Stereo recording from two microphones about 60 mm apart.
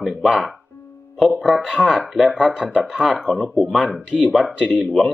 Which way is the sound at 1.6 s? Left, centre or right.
Centre.